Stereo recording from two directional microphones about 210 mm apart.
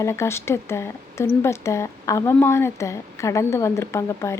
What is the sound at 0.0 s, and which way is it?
Speech, 15° left (ahead or behind).